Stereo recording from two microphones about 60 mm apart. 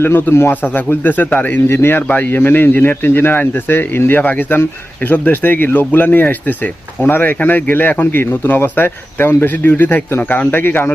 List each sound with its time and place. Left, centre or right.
0.0 s a man's voice: left